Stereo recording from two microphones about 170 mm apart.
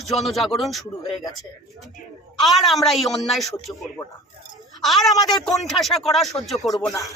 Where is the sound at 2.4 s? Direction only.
Centre (ahead or behind).